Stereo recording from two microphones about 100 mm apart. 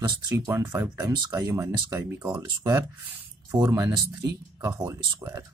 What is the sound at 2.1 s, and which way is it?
Speech, 20° right (ahead or behind).